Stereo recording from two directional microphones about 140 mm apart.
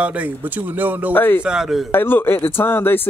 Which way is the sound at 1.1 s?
15° left (ahead or behind).